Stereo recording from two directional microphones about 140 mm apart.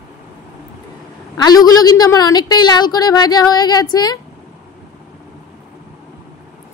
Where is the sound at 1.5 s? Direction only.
30° left (ahead or behind).